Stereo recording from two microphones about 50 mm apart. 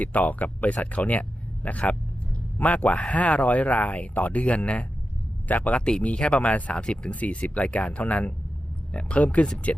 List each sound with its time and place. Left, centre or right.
0.0 s speech: left